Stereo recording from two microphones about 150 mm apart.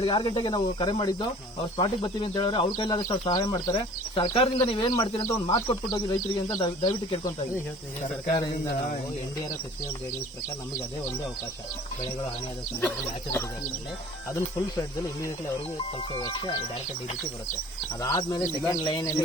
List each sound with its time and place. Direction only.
0.0 s speech: 30° left (ahead or behind)
14.3 s speech: 20° left (ahead or behind)
18.0 s speech: 25° left (ahead or behind)